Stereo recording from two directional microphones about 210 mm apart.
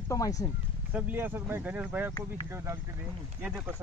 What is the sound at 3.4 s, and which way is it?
Speech, 5° right (ahead or behind).